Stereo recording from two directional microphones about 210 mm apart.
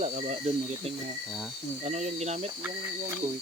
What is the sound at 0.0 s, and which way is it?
Speech, 35° right (ahead or behind).